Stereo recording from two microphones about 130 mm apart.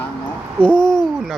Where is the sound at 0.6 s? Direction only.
5° left (ahead or behind).